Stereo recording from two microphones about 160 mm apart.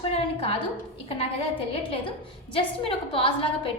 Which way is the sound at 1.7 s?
35° left (ahead or behind).